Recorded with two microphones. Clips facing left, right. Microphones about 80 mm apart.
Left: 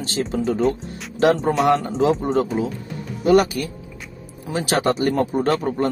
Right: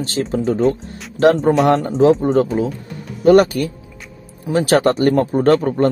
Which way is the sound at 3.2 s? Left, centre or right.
Right.